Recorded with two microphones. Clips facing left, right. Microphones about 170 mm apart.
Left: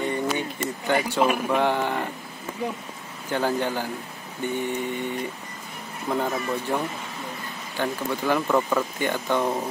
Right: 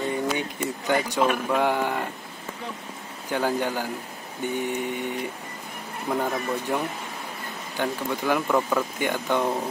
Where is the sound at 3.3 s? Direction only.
10° right (ahead or behind).